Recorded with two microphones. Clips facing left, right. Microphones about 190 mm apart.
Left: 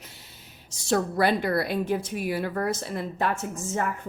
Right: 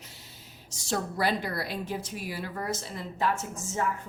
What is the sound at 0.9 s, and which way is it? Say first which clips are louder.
A woman's voice: left 6 dB; 60° left (ahead or behind).